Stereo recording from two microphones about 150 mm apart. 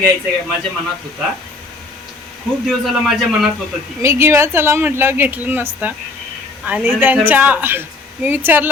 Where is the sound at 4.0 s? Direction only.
20° right (ahead or behind).